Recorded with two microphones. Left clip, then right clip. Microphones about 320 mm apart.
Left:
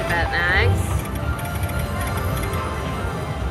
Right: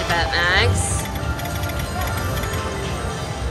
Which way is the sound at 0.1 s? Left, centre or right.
Centre.